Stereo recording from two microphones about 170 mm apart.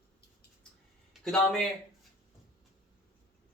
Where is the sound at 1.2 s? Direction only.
5° left (ahead or behind).